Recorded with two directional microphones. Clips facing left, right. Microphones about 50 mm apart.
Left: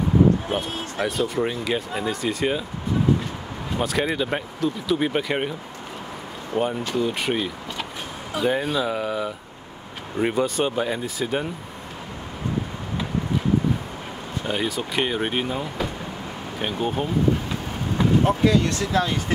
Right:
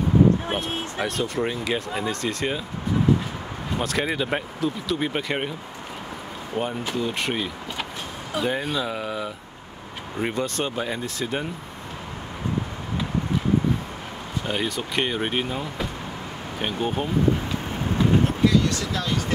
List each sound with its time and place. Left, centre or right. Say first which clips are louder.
1.0 s speech: left 3 dB; centre
3.7 s speech: left 2 dB; centre
6.5 s speech: left 3 dB; centre
14.5 s speech: left 1 dB; centre
18.2 s speech: left 1 dB; left